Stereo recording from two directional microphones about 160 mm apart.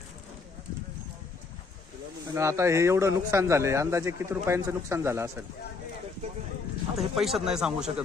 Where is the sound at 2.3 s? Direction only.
20° right (ahead or behind).